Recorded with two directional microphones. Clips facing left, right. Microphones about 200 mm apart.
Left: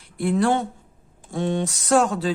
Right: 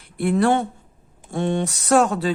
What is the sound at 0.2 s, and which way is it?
A man's voice, 60° right (ahead or behind).